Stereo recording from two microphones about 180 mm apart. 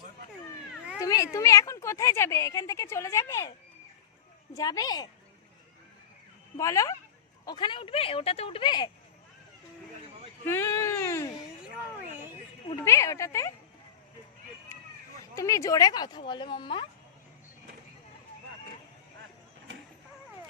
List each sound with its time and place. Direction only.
0.9 s speech: 15° left (ahead or behind)
4.5 s speech: 20° left (ahead or behind)
6.6 s speech: 20° left (ahead or behind)
10.4 s a sound: 15° left (ahead or behind)
12.7 s speech: 15° left (ahead or behind)
15.4 s speech: 15° left (ahead or behind)